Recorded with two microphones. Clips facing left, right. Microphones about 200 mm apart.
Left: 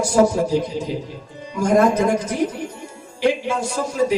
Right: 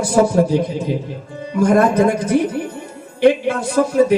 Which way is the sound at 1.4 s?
55° right (ahead or behind).